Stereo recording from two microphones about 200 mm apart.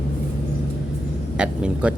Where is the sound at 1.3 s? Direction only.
5° right (ahead or behind).